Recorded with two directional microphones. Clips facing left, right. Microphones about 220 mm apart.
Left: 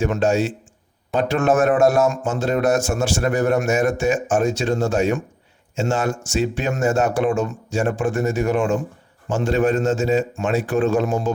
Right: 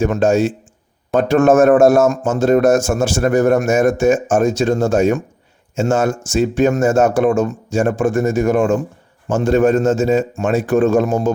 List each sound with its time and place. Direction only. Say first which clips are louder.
0.0 s a man's voice: right 5 dB; 45° right (ahead or behind)